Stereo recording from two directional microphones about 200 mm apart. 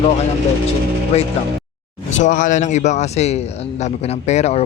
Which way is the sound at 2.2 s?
40° left (ahead or behind).